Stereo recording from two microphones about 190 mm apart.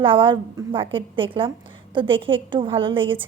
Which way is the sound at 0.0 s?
25° right (ahead or behind).